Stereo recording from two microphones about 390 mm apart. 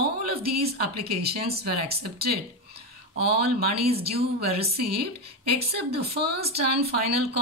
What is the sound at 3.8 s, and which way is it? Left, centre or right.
Speech, centre.